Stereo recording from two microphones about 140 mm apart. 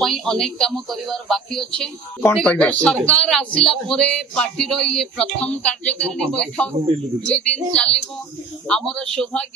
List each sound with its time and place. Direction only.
0.0 s a man's voice: centre (ahead or behind)